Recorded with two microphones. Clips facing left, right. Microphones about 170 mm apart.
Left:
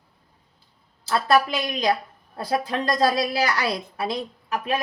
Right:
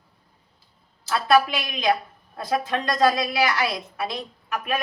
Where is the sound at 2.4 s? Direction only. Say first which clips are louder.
Even; 35° left (ahead or behind).